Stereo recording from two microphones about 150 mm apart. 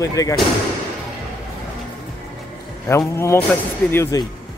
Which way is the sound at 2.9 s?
20° left (ahead or behind).